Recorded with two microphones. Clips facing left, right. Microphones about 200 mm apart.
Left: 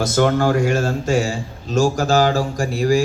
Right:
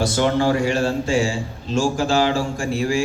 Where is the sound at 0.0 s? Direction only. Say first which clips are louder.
Left 2 dB; 45° left (ahead or behind).